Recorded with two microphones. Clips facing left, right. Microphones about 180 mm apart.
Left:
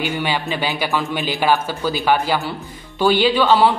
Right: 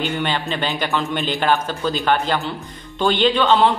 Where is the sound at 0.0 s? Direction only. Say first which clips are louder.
Left 1 dB; 10° left (ahead or behind).